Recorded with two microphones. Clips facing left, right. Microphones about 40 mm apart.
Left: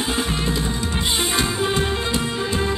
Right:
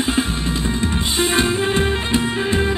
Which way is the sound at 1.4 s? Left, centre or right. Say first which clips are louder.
Right 3 dB; right.